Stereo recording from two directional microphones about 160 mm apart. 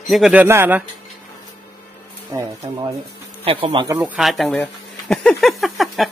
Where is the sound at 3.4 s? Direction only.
35° right (ahead or behind).